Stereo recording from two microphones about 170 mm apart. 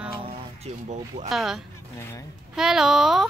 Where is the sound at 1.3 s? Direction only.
Centre (ahead or behind).